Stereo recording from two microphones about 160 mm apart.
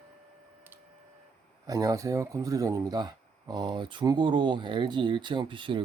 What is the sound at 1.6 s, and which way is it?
Speech, 20° right (ahead or behind).